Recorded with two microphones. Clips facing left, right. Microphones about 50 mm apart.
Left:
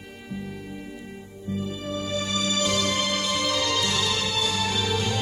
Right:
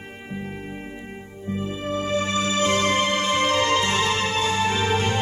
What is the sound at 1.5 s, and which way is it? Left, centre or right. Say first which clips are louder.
Music: right 4 dB; right.